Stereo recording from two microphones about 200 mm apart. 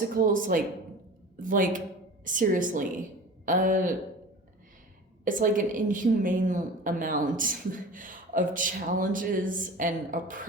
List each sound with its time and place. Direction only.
0.3 s a woman's voice: 40° right (ahead or behind)
5.2 s a woman's voice: 40° right (ahead or behind)